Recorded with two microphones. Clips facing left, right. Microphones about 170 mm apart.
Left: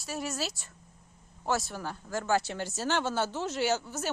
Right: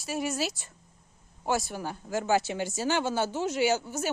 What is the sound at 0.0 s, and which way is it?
Speech, centre (ahead or behind).